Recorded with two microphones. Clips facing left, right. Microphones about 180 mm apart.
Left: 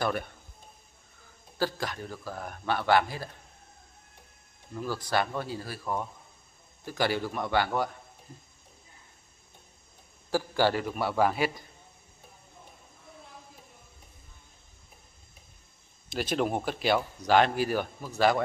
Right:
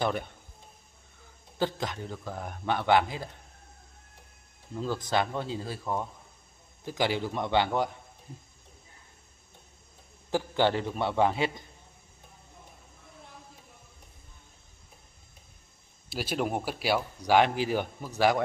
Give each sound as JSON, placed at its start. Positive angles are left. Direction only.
{"t": 1.6, "sound": "a man's voice", "side_deg": -20}
{"t": 4.7, "sound": "a man's voice", "side_deg": -20}
{"t": 10.3, "sound": "a man's voice", "side_deg": -20}
{"t": 16.1, "sound": "speech", "side_deg": -5}